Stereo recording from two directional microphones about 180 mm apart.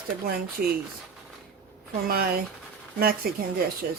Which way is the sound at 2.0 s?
55° right (ahead or behind).